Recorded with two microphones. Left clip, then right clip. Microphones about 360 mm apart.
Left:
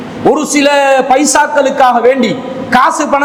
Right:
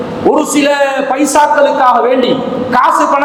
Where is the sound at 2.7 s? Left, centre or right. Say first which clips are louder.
Even; left.